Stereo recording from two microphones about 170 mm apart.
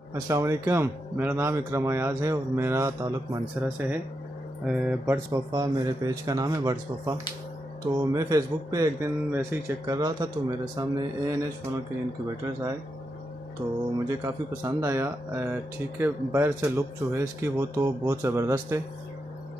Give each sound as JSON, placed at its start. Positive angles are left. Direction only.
{"t": 0.1, "sound": "a man's voice", "side_deg": -15}
{"t": 5.3, "sound": "a man's voice", "side_deg": -20}
{"t": 13.6, "sound": "a man's voice", "side_deg": -10}